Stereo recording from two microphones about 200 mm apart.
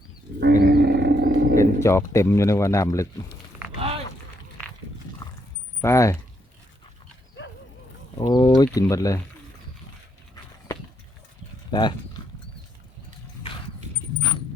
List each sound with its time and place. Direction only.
0.3 s wild animals: 55° right (ahead or behind)
1.5 s speech: 15° left (ahead or behind)
3.8 s a sound: 30° right (ahead or behind)
5.8 s speech: 15° left (ahead or behind)
8.2 s speech: 20° left (ahead or behind)
11.7 s speech: 20° left (ahead or behind)